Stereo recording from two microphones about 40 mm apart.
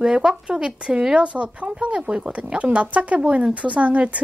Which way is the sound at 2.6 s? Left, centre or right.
Right.